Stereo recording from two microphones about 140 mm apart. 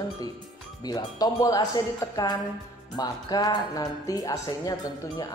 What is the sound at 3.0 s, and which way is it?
Speech, 30° left (ahead or behind).